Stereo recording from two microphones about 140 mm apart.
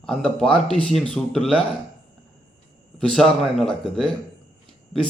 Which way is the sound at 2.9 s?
5° left (ahead or behind).